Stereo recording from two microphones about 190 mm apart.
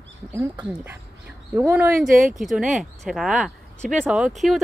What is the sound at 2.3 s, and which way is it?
Speech, centre (ahead or behind).